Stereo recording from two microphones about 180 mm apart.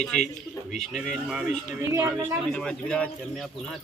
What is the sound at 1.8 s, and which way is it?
Speech, 15° right (ahead or behind).